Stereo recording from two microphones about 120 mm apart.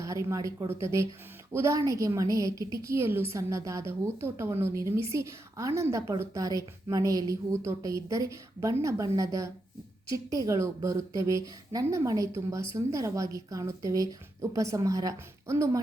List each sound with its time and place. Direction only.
0.0 s a woman's voice: 25° right (ahead or behind)